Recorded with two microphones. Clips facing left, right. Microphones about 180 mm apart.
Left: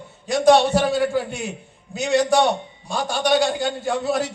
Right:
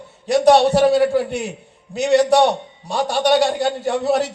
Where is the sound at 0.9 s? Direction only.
70° right (ahead or behind).